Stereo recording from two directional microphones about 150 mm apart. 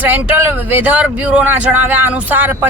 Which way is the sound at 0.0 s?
15° right (ahead or behind).